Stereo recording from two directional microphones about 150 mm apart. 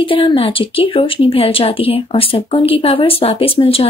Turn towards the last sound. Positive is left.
turn(degrees=40)  # may be behind; listen again after turning